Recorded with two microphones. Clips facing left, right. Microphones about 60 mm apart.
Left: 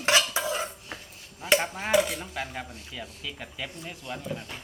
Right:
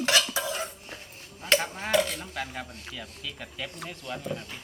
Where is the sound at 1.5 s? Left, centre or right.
Centre.